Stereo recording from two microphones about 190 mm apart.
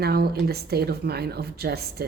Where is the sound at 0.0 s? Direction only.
55° right (ahead or behind).